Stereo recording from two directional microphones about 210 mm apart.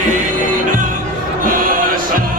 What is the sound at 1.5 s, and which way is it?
Music, 40° right (ahead or behind).